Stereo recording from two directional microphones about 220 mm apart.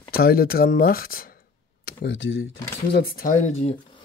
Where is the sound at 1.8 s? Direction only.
55° left (ahead or behind).